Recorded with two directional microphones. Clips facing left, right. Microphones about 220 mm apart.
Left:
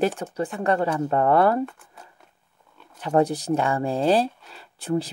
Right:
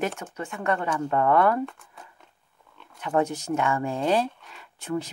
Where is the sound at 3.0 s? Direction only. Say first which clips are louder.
Left 4 dB; 35° left (ahead or behind).